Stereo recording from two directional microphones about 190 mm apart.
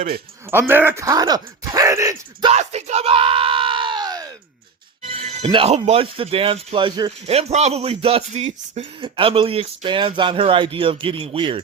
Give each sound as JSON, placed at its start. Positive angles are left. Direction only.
{"t": 0.7, "sound": "speech", "side_deg": -10}
{"t": 2.5, "sound": "yell", "side_deg": -35}
{"t": 5.0, "sound": "speech", "side_deg": -30}
{"t": 7.3, "sound": "speech", "side_deg": -35}